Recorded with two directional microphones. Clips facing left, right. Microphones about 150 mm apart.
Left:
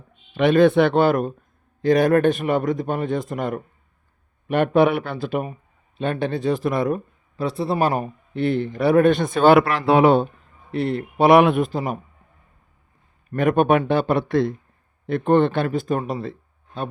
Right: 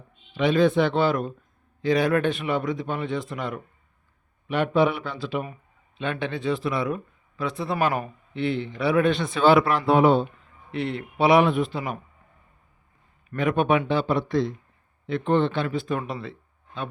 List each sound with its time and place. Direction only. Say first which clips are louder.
0.3 s speech: left 5 dB; 60° left (ahead or behind); by 10.2 s 75° left (ahead or behind)
10.2 s speech: left 3 dB; 40° left (ahead or behind)
11.3 s speech: left 4 dB; 60° left (ahead or behind)
11.7 s speech: left 5 dB; 40° left (ahead or behind)
13.3 s speech: left 4 dB; 50° left (ahead or behind)
15.0 s speech: left 5 dB; 50° left (ahead or behind)